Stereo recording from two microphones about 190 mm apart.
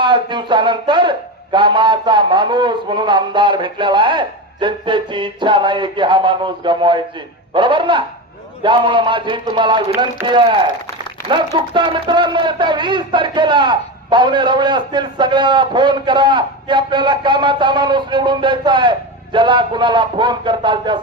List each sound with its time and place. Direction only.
0.0 s speech: 25° right (ahead or behind)